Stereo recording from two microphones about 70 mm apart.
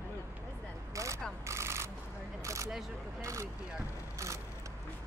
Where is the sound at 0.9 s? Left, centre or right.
Right.